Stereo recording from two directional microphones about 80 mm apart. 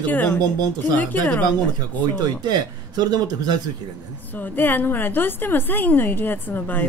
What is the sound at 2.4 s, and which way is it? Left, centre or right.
Speech, right.